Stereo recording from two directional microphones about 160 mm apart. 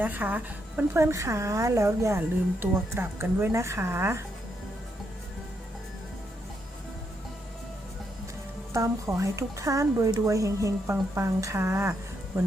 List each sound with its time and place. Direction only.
0.0 s a woman's voice: 10° right (ahead or behind)
8.7 s speech: 20° right (ahead or behind)